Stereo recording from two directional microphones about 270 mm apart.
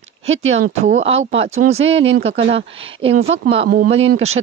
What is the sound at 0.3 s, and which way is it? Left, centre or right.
Speech, right.